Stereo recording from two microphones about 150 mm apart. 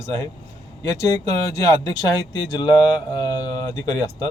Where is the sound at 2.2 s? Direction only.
25° left (ahead or behind).